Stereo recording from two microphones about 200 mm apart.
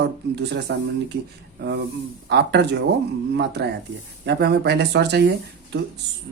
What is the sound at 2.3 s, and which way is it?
Speech, 55° right (ahead or behind).